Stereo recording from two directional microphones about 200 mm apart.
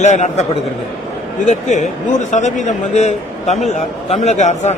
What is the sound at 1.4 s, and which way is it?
A man's voice, 35° left (ahead or behind).